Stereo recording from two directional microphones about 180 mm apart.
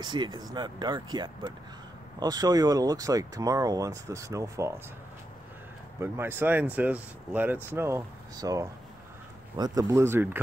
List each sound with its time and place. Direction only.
0.0 s speech: 25° right (ahead or behind)
5.9 s speech: 15° right (ahead or behind)